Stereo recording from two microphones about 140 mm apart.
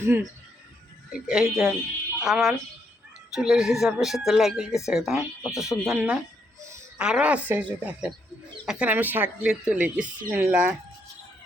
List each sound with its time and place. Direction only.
0.0 s speech: 20° right (ahead or behind)
1.1 s speech: 5° right (ahead or behind)